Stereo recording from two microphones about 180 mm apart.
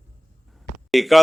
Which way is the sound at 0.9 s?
Centre (ahead or behind).